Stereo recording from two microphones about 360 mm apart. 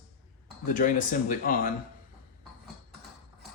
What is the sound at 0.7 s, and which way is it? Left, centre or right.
Speech, left.